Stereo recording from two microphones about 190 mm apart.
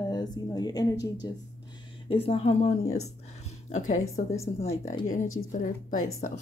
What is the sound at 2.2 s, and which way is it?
Speech, 30° left (ahead or behind).